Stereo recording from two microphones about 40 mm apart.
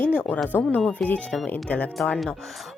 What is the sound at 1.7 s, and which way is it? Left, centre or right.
Speech, left.